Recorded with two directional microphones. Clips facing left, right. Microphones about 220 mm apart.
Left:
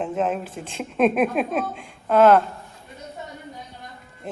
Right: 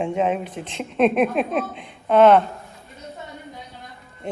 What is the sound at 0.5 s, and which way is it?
Speech, 50° left (ahead or behind).